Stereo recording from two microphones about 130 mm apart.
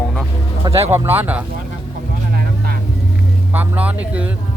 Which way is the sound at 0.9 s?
15° right (ahead or behind).